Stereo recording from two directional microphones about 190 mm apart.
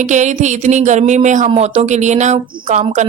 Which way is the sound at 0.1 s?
40° right (ahead or behind).